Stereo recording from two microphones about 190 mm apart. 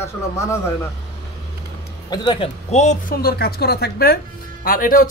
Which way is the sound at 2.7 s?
40° left (ahead or behind).